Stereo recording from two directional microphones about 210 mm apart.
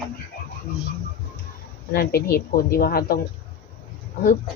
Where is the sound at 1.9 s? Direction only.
45° left (ahead or behind).